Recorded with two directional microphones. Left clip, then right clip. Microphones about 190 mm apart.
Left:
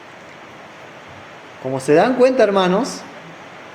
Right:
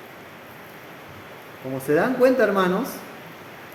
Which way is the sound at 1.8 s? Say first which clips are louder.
Left 6 dB; 30° left (ahead or behind).